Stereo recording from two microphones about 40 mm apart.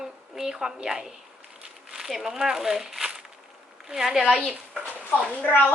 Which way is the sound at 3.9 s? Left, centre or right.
Centre.